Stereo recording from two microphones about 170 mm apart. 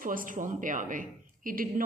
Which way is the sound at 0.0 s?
55° right (ahead or behind).